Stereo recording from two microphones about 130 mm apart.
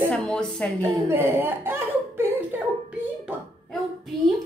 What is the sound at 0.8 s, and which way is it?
Speech, 20° right (ahead or behind).